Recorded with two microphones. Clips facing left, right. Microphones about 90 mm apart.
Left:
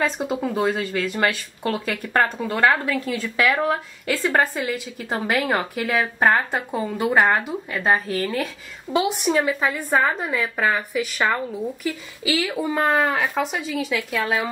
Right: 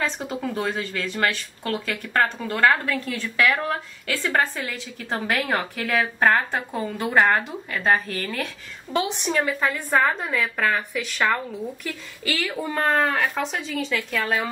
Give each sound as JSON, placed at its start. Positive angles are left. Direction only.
{"t": 0.0, "sound": "a woman's voice", "side_deg": 5}
{"t": 1.2, "sound": "speech", "side_deg": 15}
{"t": 5.3, "sound": "a woman's voice", "side_deg": 5}
{"t": 6.1, "sound": "a woman's voice", "side_deg": 15}